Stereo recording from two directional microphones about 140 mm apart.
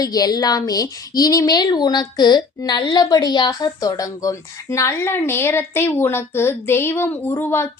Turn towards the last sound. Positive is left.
turn(degrees=15)  # may be behind; listen again after turning